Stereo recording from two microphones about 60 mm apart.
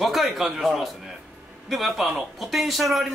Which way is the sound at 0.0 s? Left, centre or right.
Centre.